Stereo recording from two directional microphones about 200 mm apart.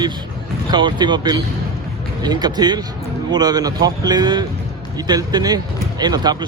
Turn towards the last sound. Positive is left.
turn(degrees=-20)  # may be behind; listen again after turning